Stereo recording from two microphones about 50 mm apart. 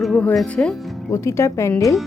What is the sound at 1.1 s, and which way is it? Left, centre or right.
Speech, left.